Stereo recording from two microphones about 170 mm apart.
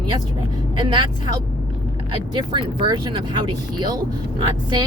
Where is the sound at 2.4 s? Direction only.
25° right (ahead or behind).